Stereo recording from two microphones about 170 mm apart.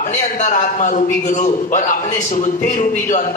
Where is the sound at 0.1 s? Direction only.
45° left (ahead or behind).